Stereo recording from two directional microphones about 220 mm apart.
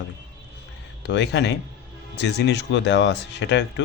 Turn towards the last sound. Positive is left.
turn(degrees=55)  # may be behind; listen again after turning